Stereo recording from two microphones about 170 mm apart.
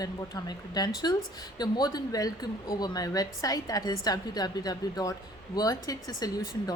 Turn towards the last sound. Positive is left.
turn(degrees=20)  # may be behind; listen again after turning